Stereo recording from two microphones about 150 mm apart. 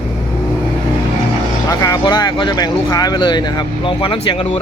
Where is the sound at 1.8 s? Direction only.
25° left (ahead or behind).